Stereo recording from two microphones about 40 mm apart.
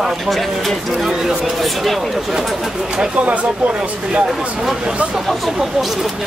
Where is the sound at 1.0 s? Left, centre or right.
Centre.